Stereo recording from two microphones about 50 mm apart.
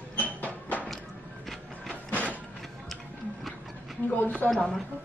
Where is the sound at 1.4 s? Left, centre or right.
Centre.